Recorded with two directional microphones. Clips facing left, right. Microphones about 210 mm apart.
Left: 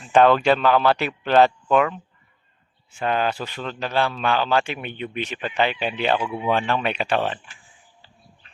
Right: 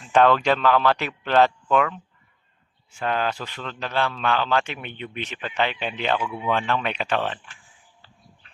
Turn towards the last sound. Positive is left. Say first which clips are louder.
# left 2 dB
turn(degrees=10)  # may be behind; listen again after turning